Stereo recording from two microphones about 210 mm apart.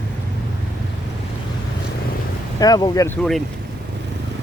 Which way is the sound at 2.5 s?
20° left (ahead or behind).